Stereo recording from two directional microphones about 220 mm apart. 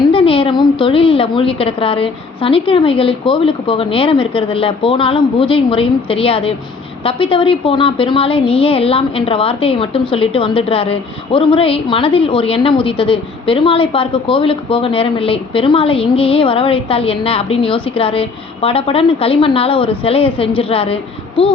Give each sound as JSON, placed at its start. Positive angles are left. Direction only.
{"t": 0.1, "sound": "a woman's voice", "side_deg": 25}